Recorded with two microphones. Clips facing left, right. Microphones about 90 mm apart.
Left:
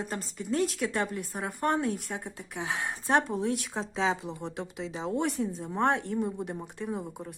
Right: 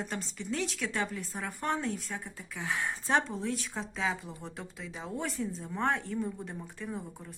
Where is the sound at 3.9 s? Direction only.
25° left (ahead or behind).